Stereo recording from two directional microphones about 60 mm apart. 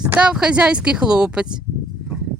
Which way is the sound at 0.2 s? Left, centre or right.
Centre.